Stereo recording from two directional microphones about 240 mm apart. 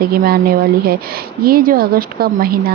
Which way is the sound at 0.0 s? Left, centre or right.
Right.